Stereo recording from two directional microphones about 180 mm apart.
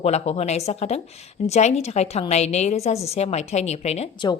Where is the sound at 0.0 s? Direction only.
35° left (ahead or behind).